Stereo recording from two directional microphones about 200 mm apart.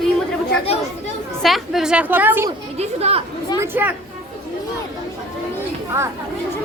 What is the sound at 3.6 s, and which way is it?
Speech, 10° right (ahead or behind).